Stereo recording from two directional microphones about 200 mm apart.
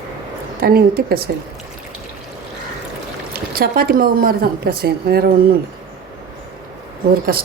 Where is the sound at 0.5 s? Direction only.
50° right (ahead or behind).